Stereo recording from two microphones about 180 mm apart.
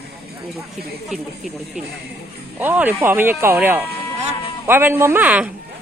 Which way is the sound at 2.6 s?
10° right (ahead or behind).